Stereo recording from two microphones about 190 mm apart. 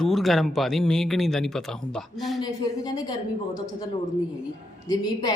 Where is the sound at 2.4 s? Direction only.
20° left (ahead or behind).